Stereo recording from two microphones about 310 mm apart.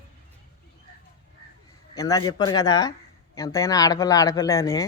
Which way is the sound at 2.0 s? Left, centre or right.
Centre.